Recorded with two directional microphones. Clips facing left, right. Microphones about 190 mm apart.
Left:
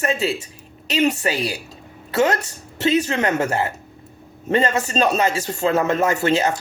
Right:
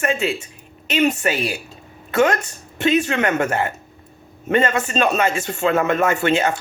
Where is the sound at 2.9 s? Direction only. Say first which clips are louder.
Right 1 dB; 40° left (ahead or behind).